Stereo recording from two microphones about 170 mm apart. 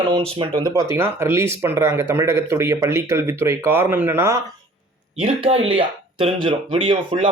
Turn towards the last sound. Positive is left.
turn(degrees=-30)  # may be behind; listen again after turning